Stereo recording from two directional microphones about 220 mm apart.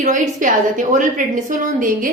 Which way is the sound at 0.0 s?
35° right (ahead or behind).